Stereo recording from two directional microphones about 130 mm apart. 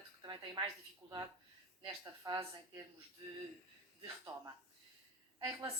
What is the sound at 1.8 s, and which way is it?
A woman's voice, 30° right (ahead or behind).